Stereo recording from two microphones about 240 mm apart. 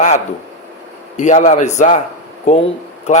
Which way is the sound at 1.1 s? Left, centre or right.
Left.